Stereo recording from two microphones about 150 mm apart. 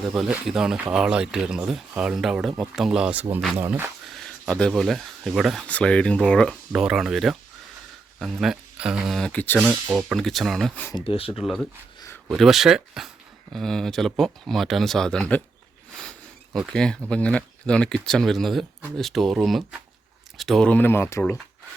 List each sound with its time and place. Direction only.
0.1 s speech: 5° right (ahead or behind)
4.0 s speech: 5° left (ahead or behind)
10.9 s speech: 40° left (ahead or behind)
11.9 s a sound: 20° left (ahead or behind)
12.3 s speech: centre (ahead or behind)
16.7 s speech: 5° left (ahead or behind)